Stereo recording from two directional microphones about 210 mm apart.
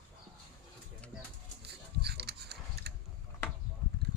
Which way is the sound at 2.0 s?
50° right (ahead or behind).